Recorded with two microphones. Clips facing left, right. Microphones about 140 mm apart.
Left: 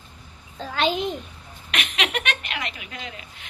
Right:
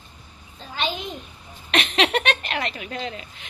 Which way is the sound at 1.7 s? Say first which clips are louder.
Right 6 dB; 30° right (ahead or behind).